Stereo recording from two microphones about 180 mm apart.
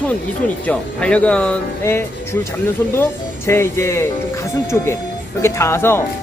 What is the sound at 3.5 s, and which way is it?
Speech, 15° left (ahead or behind).